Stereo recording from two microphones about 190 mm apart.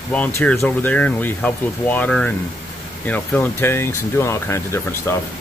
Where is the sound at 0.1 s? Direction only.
10° left (ahead or behind).